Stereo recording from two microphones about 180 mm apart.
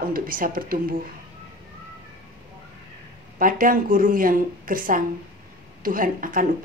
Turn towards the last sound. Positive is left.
turn(degrees=-50)  # may be behind; listen again after turning